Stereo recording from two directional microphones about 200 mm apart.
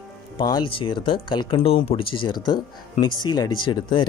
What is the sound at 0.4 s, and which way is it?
Speech, 20° left (ahead or behind).